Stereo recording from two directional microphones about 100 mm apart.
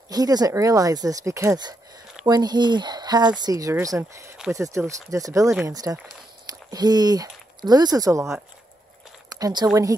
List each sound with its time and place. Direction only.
0.1 s speech: 40° right (ahead or behind)
2.2 s speech: 45° right (ahead or behind)
9.3 s speech: 40° right (ahead or behind)